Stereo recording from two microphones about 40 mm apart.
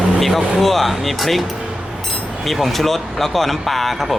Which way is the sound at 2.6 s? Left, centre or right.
Centre.